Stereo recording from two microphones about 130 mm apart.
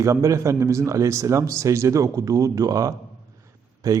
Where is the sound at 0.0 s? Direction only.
25° right (ahead or behind).